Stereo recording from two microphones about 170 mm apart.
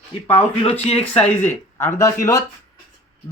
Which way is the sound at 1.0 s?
5° left (ahead or behind).